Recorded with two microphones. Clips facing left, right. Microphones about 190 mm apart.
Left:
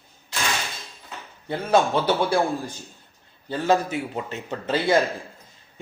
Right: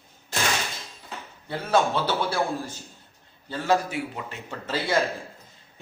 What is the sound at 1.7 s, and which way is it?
A man's voice, 15° left (ahead or behind).